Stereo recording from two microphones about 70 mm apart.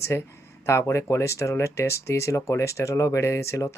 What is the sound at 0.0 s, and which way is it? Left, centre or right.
Speech, left.